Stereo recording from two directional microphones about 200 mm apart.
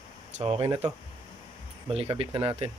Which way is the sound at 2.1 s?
25° right (ahead or behind).